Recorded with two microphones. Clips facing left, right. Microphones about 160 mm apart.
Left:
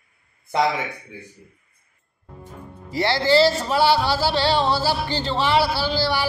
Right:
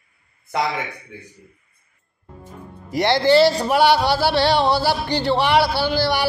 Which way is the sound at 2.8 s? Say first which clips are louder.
Right 4 dB; 15° right (ahead or behind).